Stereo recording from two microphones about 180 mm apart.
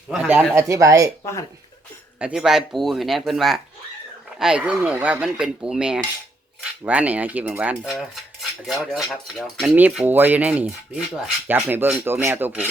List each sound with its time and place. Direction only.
0.1 s speech: 10° right (ahead or behind)
1.2 s speech: 15° left (ahead or behind)
2.1 s cutlery: 5° right (ahead or behind)
9.7 s speech: 10° right (ahead or behind)